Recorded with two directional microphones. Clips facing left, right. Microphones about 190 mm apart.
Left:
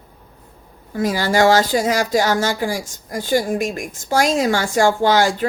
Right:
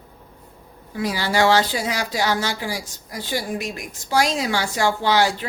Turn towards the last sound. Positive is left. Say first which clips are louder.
# left 4 dB
turn(degrees=45)  # may be behind; listen again after turning